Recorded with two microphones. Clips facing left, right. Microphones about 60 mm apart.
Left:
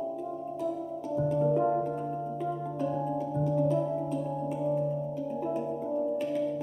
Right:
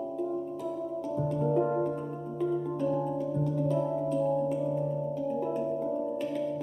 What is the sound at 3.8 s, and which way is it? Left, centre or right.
Music, centre.